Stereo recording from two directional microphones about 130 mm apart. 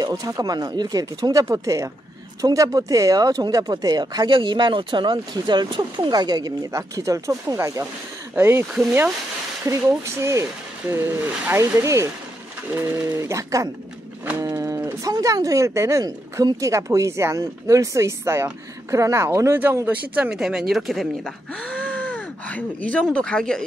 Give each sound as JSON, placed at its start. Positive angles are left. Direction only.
{"t": 0.0, "sound": "speech", "side_deg": -30}
{"t": 9.7, "sound": "speech", "side_deg": -20}
{"t": 14.4, "sound": "a sound", "side_deg": -25}
{"t": 15.0, "sound": "speech", "side_deg": -30}
{"t": 20.2, "sound": "speech", "side_deg": -5}
{"t": 21.6, "sound": "a sound", "side_deg": 10}
{"t": 23.1, "sound": "speech", "side_deg": 5}